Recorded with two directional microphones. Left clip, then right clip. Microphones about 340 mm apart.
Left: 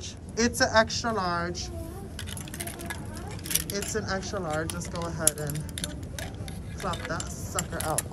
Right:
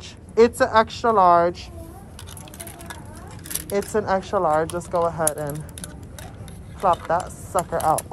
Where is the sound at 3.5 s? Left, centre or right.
Centre.